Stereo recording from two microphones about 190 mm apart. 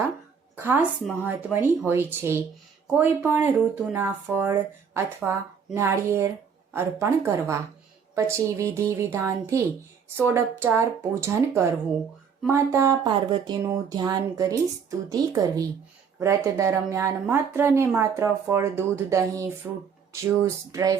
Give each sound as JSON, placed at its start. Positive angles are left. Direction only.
{"t": 0.5, "sound": "a woman's voice", "side_deg": -10}